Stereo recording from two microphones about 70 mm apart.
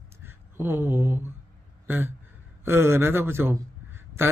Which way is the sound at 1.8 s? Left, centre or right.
Right.